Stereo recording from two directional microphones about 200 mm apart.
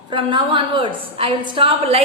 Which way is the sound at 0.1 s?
25° right (ahead or behind).